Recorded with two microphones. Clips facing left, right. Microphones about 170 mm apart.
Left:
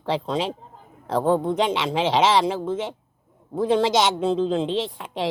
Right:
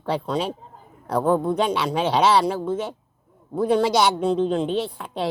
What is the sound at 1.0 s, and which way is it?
Speech, 25° left (ahead or behind).